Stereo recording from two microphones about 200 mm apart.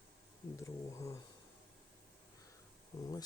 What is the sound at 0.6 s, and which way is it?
Speech, 15° left (ahead or behind).